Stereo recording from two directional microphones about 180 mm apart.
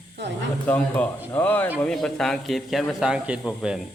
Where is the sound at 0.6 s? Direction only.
10° left (ahead or behind).